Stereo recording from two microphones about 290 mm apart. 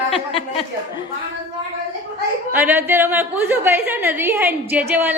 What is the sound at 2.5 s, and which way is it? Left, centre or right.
A woman's voice, centre.